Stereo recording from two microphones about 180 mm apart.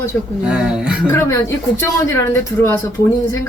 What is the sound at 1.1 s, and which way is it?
Speech, 15° left (ahead or behind).